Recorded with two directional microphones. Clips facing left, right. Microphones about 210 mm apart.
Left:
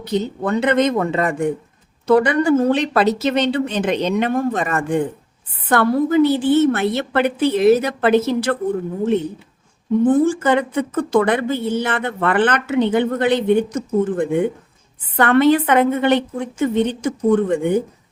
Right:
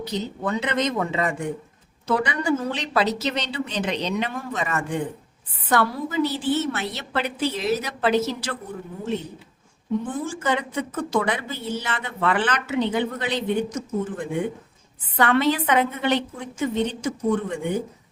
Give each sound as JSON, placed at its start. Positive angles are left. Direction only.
{"t": 0.0, "sound": "a woman's voice", "side_deg": 55}
{"t": 10.1, "sound": "a woman's voice", "side_deg": 55}